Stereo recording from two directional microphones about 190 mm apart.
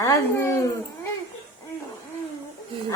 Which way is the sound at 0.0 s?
15° left (ahead or behind).